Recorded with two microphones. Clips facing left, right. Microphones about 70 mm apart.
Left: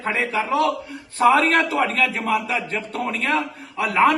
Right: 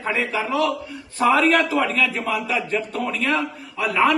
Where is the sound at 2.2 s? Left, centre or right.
Left.